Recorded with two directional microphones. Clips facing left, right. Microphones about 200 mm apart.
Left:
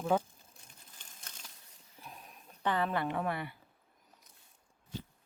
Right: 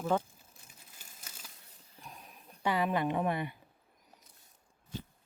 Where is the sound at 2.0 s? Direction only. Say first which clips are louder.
Even; centre (ahead or behind).